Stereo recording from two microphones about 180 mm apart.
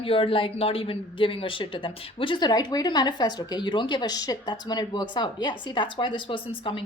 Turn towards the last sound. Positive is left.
turn(degrees=30)  # may be behind; listen again after turning